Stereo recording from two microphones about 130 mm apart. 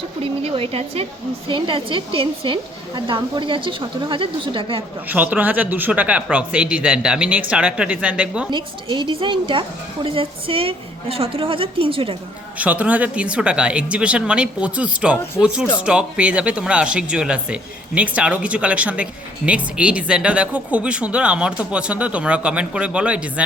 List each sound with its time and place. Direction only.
0.2 s a woman's voice: 45° right (ahead or behind)
5.0 s speech: 15° right (ahead or behind)
8.4 s a woman's voice: 40° right (ahead or behind)
12.5 s speech: 10° right (ahead or behind)